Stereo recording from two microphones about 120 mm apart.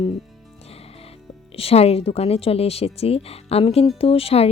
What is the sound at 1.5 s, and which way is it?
Speech, 55° left (ahead or behind).